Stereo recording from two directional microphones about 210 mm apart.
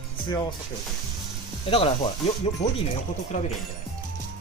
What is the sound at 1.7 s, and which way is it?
Speech, 25° left (ahead or behind).